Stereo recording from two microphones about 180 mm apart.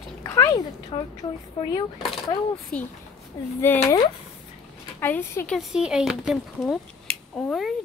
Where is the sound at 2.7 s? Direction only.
5° left (ahead or behind).